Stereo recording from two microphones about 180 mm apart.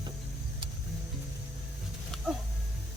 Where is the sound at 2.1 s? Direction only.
5° left (ahead or behind).